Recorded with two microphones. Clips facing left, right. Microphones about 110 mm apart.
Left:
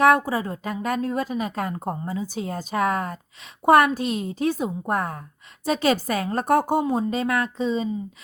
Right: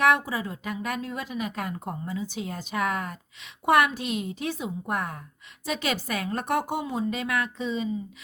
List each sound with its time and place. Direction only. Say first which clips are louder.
0.0 s a woman's voice: left 5 dB; 40° left (ahead or behind)